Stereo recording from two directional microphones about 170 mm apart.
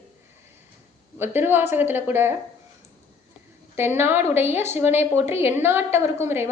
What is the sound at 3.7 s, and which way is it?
A woman's voice, 15° right (ahead or behind).